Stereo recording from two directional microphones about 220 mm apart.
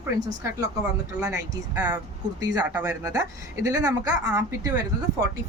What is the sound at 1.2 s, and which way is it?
Speech, 10° right (ahead or behind).